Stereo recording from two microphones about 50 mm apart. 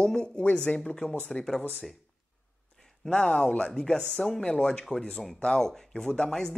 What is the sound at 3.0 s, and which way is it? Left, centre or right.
Speech, centre.